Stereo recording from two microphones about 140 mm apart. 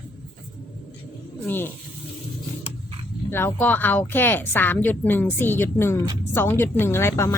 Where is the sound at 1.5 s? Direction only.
15° left (ahead or behind).